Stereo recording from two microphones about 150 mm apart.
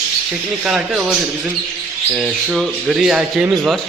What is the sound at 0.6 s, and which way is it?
Speech, 5° right (ahead or behind).